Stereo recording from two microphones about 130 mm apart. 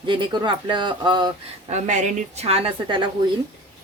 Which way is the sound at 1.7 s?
65° right (ahead or behind).